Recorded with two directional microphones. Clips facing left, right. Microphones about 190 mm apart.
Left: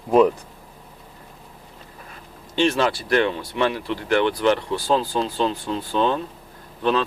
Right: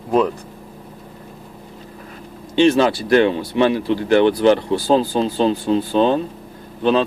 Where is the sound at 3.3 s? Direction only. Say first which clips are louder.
Right 6 dB; 25° right (ahead or behind).